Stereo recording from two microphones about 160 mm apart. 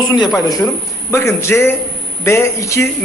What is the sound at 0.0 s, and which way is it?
A man's voice, 25° left (ahead or behind).